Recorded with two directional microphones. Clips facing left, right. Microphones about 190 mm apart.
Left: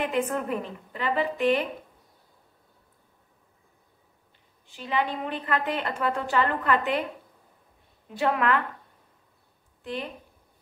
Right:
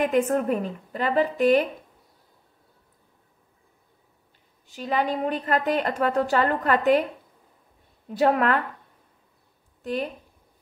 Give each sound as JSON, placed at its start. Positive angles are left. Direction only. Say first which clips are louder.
{"t": 0.0, "sound": "a woman's voice", "louder": "right 5 dB", "side_deg": -45}
{"t": 4.6, "sound": "a woman's voice", "louder": "right 3 dB", "side_deg": -40}
{"t": 8.1, "sound": "a woman's voice", "louder": "right 4 dB", "side_deg": -40}